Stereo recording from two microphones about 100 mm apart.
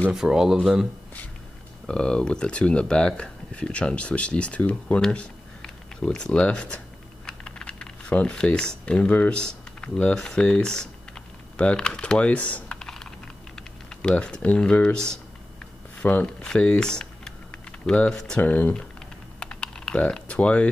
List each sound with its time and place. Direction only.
0.1 s speech: 5° right (ahead or behind)
0.6 s speech: 5° left (ahead or behind)
1.9 s speech: 10° left (ahead or behind)
18.4 s speech: 15° left (ahead or behind)
19.4 s typing: 10° left (ahead or behind)